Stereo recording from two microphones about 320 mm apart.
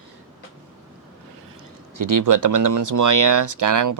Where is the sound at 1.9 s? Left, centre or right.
Right.